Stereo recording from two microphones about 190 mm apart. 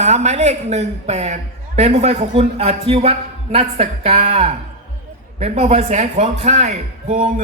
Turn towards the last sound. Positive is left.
turn(degrees=-40)  # may be behind; listen again after turning